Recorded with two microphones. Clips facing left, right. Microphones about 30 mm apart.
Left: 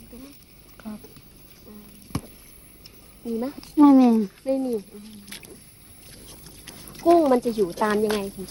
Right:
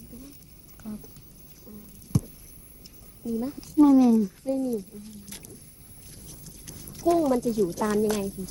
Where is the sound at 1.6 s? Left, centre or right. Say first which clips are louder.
Left 1 dB; left.